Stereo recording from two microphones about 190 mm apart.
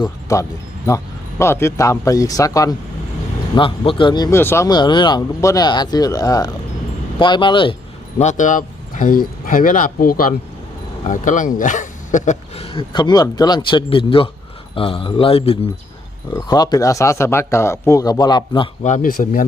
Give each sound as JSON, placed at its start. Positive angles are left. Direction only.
{"t": 0.0, "sound": "speech", "side_deg": 15}
{"t": 8.2, "sound": "speech", "side_deg": 40}
{"t": 18.8, "sound": "speech", "side_deg": 40}